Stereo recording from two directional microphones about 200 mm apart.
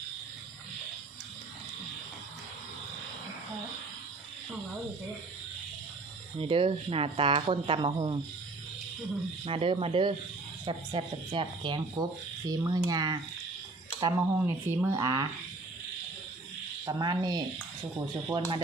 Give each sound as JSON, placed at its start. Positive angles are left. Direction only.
{"t": 6.4, "sound": "speech", "side_deg": -25}
{"t": 9.4, "sound": "speech", "side_deg": -25}
{"t": 16.8, "sound": "speech", "side_deg": -20}